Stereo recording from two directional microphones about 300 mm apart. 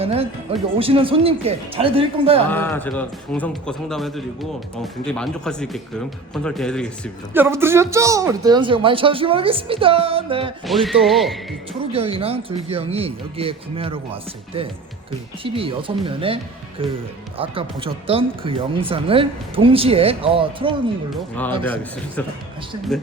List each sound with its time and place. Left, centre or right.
0.0 s speech: centre
2.5 s a man's voice: centre
7.4 s speech: centre
10.7 s a man's voice: centre
11.9 s speech: centre
21.6 s a man's voice: centre